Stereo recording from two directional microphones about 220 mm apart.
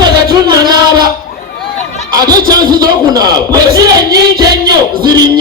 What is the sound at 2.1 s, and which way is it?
A man's voice, 15° right (ahead or behind).